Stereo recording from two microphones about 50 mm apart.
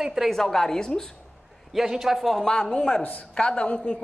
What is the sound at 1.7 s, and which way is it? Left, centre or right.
Speech, centre.